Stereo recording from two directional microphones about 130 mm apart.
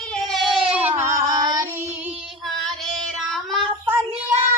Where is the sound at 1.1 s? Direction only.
30° right (ahead or behind).